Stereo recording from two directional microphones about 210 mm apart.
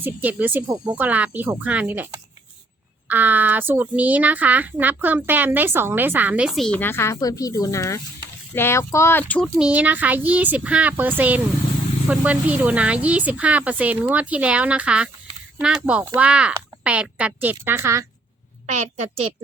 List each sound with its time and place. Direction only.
0.0 s a woman's voice: 10° right (ahead or behind); by 9.5 s 5° left (ahead or behind)
9.6 s a woman's voice: 5° right (ahead or behind)
18.6 s a woman's voice: 30° right (ahead or behind)